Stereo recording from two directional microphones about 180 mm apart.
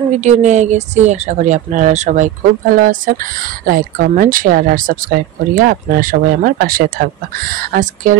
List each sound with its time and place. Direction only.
0.2 s speech: 40° right (ahead or behind)